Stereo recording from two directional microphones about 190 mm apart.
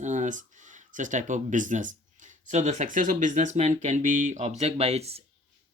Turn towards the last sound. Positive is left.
turn(degrees=-35)  # may be behind; listen again after turning